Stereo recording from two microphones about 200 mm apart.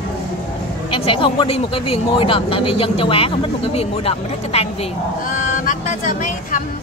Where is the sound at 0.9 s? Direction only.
25° left (ahead or behind).